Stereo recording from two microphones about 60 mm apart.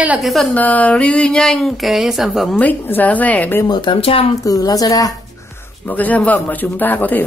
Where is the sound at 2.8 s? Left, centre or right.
Left.